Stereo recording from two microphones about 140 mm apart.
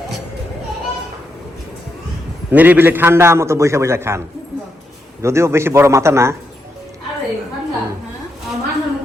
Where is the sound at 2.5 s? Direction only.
10° right (ahead or behind).